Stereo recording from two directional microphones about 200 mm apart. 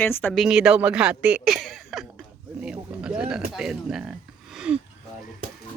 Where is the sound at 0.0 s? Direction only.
10° left (ahead or behind).